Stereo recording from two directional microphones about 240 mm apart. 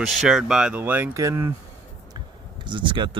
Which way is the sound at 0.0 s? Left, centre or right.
Centre.